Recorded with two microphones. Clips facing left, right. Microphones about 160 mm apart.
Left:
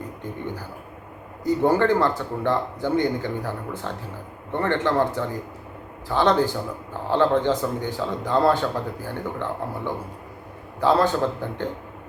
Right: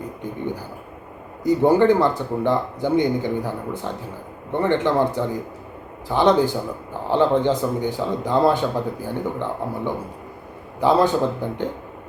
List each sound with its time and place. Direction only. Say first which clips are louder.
1.5 s a man's voice: right 4 dB; 15° right (ahead or behind)